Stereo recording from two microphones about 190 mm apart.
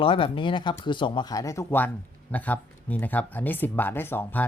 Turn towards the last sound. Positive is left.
turn(degrees=10)  # may be behind; listen again after turning